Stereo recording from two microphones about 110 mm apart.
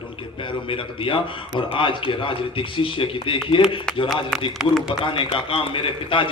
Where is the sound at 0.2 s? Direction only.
50° left (ahead or behind).